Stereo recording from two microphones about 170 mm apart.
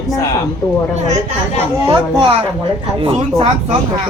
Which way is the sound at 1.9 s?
30° right (ahead or behind).